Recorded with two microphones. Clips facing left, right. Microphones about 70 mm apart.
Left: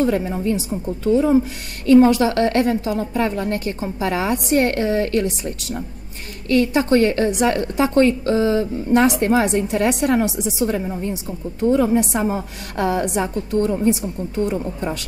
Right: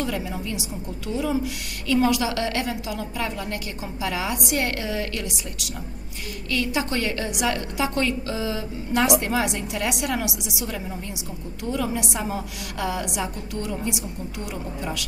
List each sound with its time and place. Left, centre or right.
0.0 s a woman's voice: left